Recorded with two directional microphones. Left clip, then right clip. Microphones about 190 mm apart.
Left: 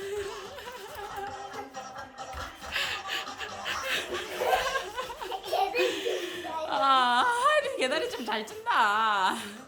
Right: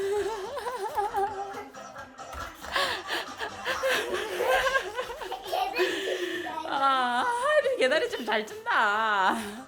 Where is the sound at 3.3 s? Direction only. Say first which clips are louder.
Right 2 dB; 25° right (ahead or behind); by 5.3 s 10° right (ahead or behind).